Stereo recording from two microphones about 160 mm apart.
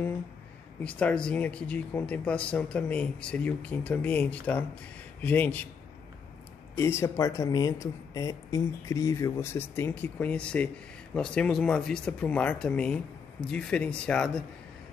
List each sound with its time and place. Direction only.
0.8 s speech: 10° left (ahead or behind)
6.7 s speech: 15° left (ahead or behind)